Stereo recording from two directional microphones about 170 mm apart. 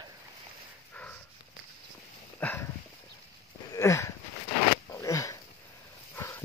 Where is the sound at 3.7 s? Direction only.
20° left (ahead or behind).